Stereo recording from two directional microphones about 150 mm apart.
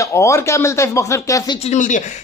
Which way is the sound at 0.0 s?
20° left (ahead or behind).